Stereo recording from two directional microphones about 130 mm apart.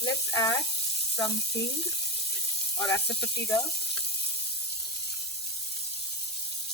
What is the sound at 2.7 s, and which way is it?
Speech, 25° left (ahead or behind).